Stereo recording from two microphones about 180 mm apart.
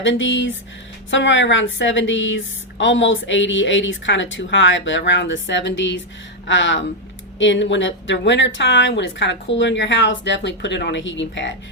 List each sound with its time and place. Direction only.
0.0 s a woman's voice: 90° left